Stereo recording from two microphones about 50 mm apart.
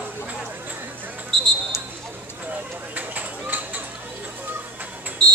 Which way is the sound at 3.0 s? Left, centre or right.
Right.